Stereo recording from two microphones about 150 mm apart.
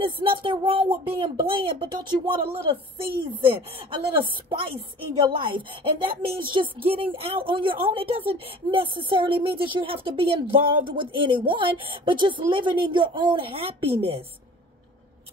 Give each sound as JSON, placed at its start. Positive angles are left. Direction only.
{"t": 0.0, "sound": "a woman's voice", "side_deg": -35}